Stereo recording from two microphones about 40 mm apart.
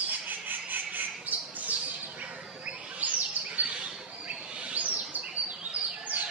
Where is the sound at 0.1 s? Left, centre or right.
Right.